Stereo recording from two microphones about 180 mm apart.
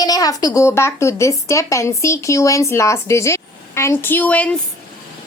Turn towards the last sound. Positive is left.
turn(degrees=10)  # may be behind; listen again after turning